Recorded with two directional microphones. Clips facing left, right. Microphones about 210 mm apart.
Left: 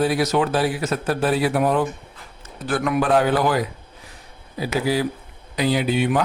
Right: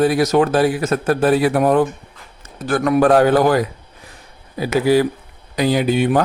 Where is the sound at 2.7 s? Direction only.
40° right (ahead or behind).